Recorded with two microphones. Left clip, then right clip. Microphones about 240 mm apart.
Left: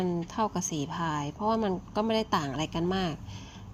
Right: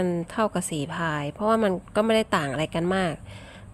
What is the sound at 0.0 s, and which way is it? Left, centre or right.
Speech, right.